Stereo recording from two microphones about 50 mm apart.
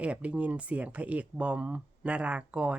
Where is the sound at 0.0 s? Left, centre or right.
Right.